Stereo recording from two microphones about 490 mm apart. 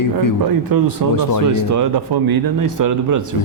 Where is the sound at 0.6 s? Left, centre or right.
Right.